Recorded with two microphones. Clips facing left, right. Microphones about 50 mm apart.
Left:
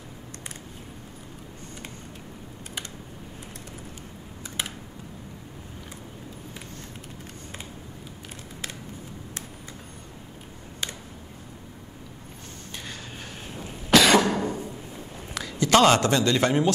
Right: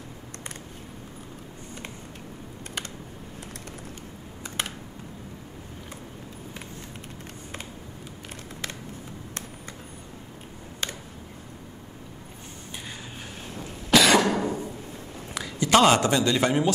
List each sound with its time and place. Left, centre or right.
13.8 s cough: centre
14.1 s cough: centre
15.3 s a man's voice: centre